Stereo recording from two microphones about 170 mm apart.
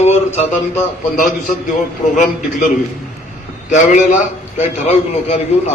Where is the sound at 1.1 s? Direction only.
55° left (ahead or behind).